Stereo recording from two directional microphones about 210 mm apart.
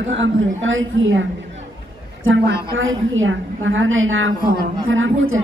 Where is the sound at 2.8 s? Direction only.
70° right (ahead or behind).